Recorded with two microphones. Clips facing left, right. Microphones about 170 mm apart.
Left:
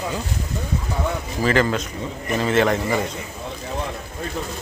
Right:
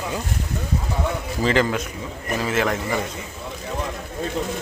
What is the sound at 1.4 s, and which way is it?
Speech, 15° right (ahead or behind).